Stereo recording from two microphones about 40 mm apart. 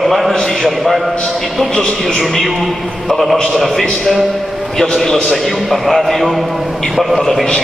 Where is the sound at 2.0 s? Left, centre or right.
Centre.